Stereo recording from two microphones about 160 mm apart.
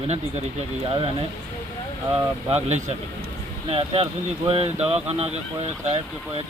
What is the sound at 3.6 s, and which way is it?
Speech, 35° right (ahead or behind).